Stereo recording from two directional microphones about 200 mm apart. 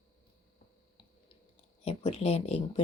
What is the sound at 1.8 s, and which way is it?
Speech, 30° left (ahead or behind).